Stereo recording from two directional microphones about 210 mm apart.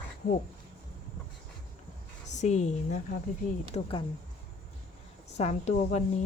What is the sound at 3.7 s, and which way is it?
Speech, 25° left (ahead or behind).